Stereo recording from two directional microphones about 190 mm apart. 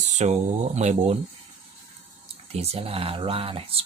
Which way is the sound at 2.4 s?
35° right (ahead or behind).